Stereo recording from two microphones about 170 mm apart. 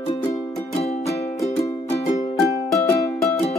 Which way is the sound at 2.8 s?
10° left (ahead or behind).